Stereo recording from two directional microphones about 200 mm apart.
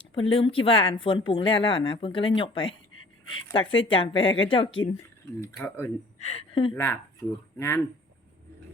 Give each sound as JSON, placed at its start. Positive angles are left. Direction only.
{"t": 0.0, "sound": "speech", "side_deg": 25}
{"t": 5.4, "sound": "speech", "side_deg": 15}
{"t": 6.1, "sound": "speech", "side_deg": 30}
{"t": 6.7, "sound": "speech", "side_deg": 10}